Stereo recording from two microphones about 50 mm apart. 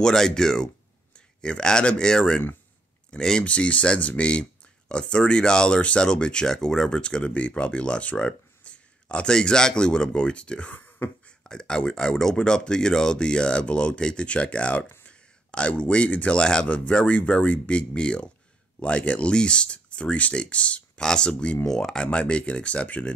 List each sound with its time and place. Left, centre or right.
0.0 s speech: centre
3.4 s a man's voice: left